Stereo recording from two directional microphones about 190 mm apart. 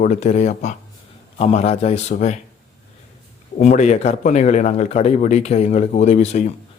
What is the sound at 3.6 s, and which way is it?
Speech, 40° left (ahead or behind).